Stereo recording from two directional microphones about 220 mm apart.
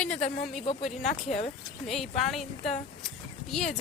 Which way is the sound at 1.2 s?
30° left (ahead or behind).